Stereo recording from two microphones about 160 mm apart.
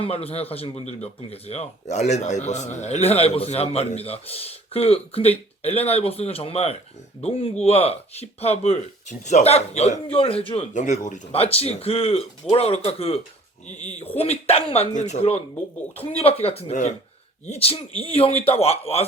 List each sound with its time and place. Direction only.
0.0 s speech: 40° left (ahead or behind)
10.8 s speech: 50° left (ahead or behind)